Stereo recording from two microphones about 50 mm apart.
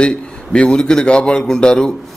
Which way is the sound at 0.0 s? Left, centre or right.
Centre.